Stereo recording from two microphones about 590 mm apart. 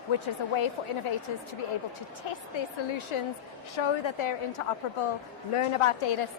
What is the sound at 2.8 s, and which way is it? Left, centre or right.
A woman's voice, left.